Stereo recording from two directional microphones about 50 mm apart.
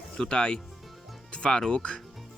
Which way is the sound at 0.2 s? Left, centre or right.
Centre.